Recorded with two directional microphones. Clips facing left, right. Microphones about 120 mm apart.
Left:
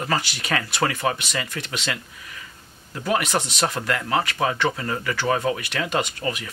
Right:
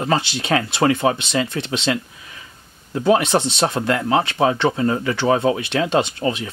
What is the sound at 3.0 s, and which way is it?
Speech, 25° right (ahead or behind).